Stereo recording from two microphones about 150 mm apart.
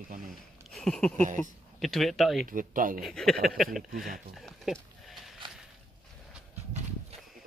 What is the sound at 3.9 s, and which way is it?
Speech, 75° right (ahead or behind).